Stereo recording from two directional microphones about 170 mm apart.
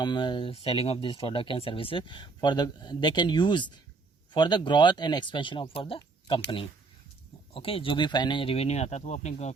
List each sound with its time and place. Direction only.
0.0 s speech: 25° left (ahead or behind)
7.5 s speech: 35° left (ahead or behind)